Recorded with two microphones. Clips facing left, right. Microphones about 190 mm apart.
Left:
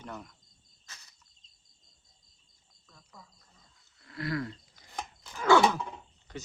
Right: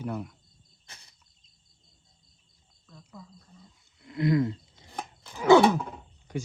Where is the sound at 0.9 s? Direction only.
30° right (ahead or behind).